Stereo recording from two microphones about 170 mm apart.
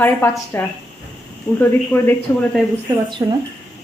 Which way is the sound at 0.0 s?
10° left (ahead or behind).